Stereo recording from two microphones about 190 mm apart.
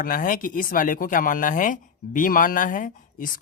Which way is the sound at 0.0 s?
45° left (ahead or behind).